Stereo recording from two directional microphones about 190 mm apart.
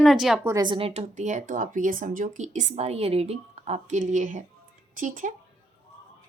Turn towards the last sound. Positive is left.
turn(degrees=-45)  # may be behind; listen again after turning